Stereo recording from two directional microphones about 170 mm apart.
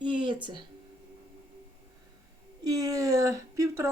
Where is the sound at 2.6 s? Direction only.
20° right (ahead or behind).